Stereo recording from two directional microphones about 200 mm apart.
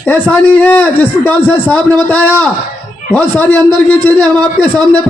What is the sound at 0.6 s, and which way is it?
A man's voice, 5° left (ahead or behind).